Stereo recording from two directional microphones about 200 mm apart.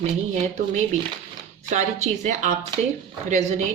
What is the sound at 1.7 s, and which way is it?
Speech, 35° right (ahead or behind).